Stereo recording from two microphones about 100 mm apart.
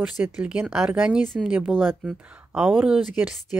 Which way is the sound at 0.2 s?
10° right (ahead or behind).